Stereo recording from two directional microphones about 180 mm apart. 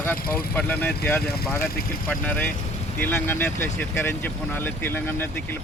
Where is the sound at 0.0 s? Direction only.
10° left (ahead or behind).